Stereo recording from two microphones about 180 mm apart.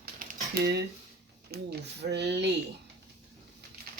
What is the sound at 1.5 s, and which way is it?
Speech, 65° right (ahead or behind).